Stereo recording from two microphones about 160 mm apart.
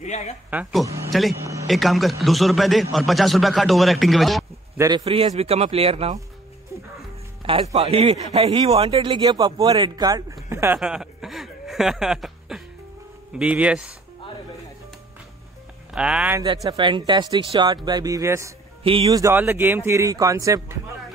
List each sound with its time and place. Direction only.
0.0 s a woman's voice: 45° left (ahead or behind)
0.5 s speech: 5° right (ahead or behind)
0.8 s a man's voice: 20° right (ahead or behind)
1.7 s a man's voice: centre (ahead or behind)
4.7 s a man's voice: 25° right (ahead or behind)
5.0 s speech: 40° right (ahead or behind)
7.7 s a man's voice: 40° right (ahead or behind); by 10.8 s 15° right (ahead or behind)
10.8 s chuckle: 5° right (ahead or behind)
13.4 s speech: 10° right (ahead or behind)
15.9 s speech: 5° right (ahead or behind)
16.7 s a man's voice: 30° right (ahead or behind)